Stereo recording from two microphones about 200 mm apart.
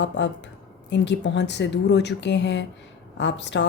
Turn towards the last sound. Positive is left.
turn(degrees=65)  # may be behind; listen again after turning